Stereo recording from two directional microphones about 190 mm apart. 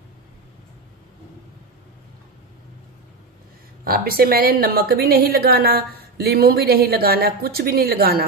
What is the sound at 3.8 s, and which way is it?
A woman's voice, 50° right (ahead or behind).